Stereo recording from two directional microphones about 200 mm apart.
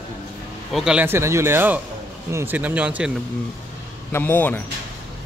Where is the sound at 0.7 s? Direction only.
5° right (ahead or behind).